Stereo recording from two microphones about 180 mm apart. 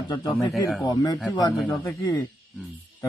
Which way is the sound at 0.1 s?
20° left (ahead or behind).